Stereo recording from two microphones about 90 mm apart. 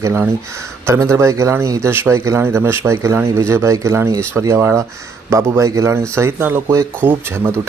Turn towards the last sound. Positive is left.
turn(degrees=-25)  # may be behind; listen again after turning